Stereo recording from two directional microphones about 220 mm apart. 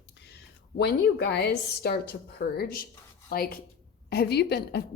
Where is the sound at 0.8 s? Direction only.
50° left (ahead or behind).